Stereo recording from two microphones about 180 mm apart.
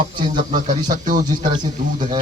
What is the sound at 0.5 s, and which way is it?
Speech, 45° right (ahead or behind).